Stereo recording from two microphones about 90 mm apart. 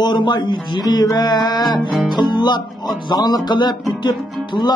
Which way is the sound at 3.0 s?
50° left (ahead or behind).